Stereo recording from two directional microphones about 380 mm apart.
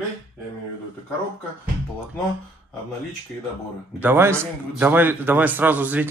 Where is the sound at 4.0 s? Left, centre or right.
Centre.